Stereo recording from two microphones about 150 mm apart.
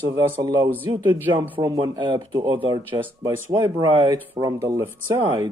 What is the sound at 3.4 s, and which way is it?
Speech, 20° right (ahead or behind).